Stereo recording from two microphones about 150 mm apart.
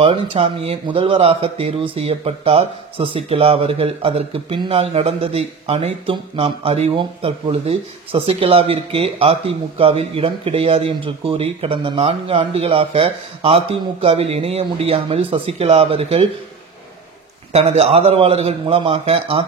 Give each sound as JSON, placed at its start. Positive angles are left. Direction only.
{"t": 0.0, "sound": "speech", "side_deg": -40}
{"t": 17.5, "sound": "a man's voice", "side_deg": -45}